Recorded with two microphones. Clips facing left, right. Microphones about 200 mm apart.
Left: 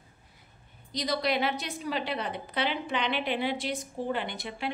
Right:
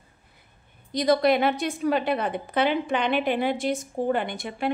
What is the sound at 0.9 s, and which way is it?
A woman's voice, 55° right (ahead or behind).